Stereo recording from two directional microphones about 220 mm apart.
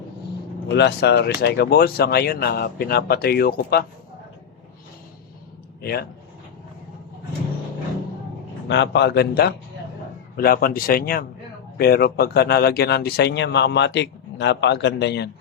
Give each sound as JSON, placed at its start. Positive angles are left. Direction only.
{"t": 0.7, "sound": "speech", "side_deg": 50}
{"t": 5.8, "sound": "speech", "side_deg": 45}
{"t": 8.6, "sound": "a man's voice", "side_deg": 50}